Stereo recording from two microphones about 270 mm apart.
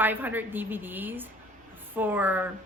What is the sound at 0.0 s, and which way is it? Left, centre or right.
A woman's voice, centre.